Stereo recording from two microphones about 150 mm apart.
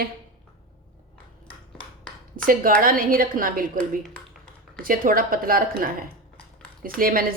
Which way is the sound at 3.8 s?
5° left (ahead or behind).